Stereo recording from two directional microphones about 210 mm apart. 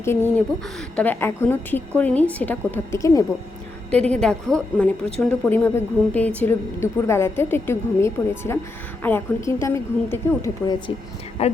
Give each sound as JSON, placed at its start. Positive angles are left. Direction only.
{"t": 0.0, "sound": "a woman's voice", "side_deg": 10}
{"t": 11.4, "sound": "speech", "side_deg": 30}